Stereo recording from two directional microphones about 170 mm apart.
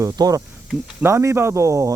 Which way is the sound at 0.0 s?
20° right (ahead or behind).